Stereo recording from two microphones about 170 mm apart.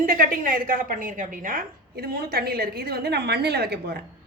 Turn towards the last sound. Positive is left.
turn(degrees=-70)  # may be behind; listen again after turning